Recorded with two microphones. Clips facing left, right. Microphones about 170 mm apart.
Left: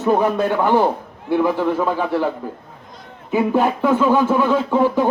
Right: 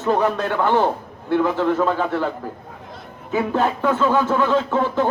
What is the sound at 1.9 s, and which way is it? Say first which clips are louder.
Speech: left 2 dB; 10° left (ahead or behind).